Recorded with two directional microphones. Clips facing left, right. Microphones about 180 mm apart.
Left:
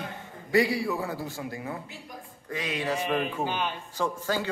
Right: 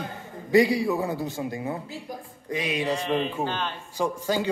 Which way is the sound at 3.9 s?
15° right (ahead or behind).